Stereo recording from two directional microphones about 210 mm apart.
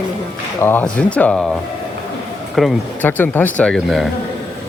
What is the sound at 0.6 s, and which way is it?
Speech, 10° left (ahead or behind).